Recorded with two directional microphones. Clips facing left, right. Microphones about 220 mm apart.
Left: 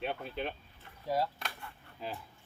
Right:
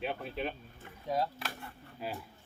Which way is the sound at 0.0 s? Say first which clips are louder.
Right 1 dB; centre (ahead or behind).